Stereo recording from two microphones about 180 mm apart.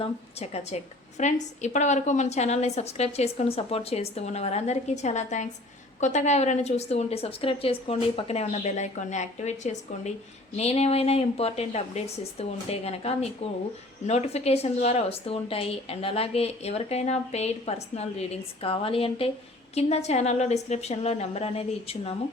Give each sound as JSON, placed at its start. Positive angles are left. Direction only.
{"t": 0.0, "sound": "a woman's voice", "side_deg": 35}